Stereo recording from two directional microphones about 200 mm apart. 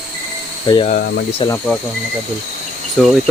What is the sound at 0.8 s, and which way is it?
Speech, 35° left (ahead or behind).